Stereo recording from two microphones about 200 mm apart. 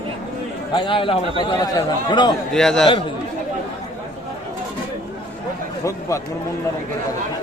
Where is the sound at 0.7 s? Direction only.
25° left (ahead or behind).